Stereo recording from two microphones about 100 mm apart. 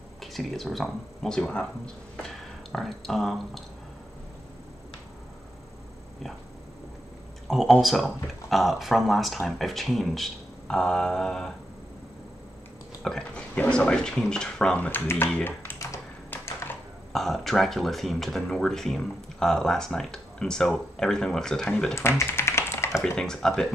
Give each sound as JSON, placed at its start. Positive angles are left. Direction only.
{"t": 0.2, "sound": "speech", "side_deg": 0}
{"t": 7.4, "sound": "speech", "side_deg": 5}
{"t": 13.0, "sound": "speech", "side_deg": 10}
{"t": 15.4, "sound": "typing", "side_deg": 20}
{"t": 17.1, "sound": "speech", "side_deg": 0}
{"t": 22.2, "sound": "tap", "side_deg": 25}
{"t": 23.1, "sound": "speech", "side_deg": 5}